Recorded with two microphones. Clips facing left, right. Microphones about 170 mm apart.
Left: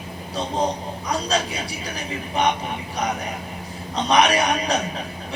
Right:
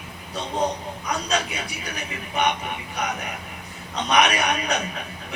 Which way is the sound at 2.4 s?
35° left (ahead or behind).